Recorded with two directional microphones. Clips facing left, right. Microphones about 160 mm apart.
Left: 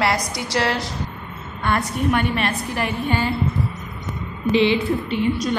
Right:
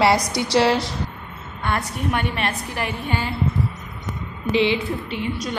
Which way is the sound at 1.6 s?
15° right (ahead or behind).